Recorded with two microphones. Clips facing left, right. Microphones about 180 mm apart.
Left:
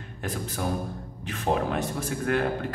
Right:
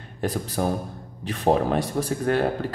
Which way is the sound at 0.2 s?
35° right (ahead or behind).